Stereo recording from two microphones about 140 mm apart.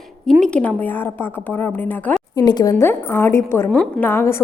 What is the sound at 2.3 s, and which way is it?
A woman's voice, 30° left (ahead or behind).